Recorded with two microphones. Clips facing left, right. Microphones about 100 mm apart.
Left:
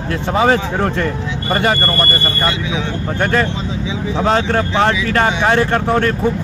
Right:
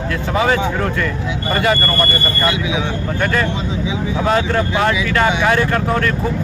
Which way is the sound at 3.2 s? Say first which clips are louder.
Left 2 dB; 35° left (ahead or behind).